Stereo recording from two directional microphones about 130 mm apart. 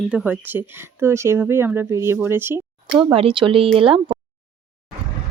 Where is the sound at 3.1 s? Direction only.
40° right (ahead or behind).